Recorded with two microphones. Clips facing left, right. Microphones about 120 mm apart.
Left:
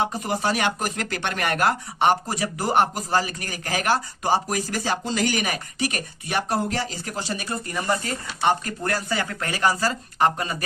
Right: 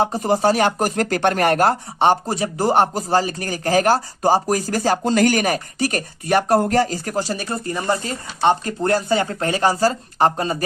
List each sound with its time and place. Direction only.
0.0 s speech: 35° right (ahead or behind)